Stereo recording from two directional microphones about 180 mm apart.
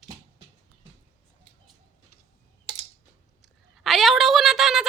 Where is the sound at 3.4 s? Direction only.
Centre (ahead or behind).